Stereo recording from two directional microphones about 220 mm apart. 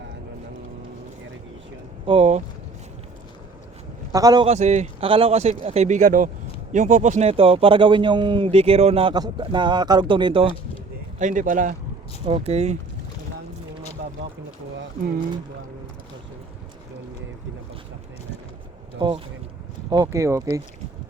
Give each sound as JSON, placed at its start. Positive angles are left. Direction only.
{"t": 2.0, "sound": "a man's voice", "side_deg": -30}
{"t": 4.1, "sound": "speech", "side_deg": -15}
{"t": 4.5, "sound": "a man's voice", "side_deg": -30}
{"t": 11.2, "sound": "a man's voice", "side_deg": -35}
{"t": 18.9, "sound": "speech", "side_deg": -20}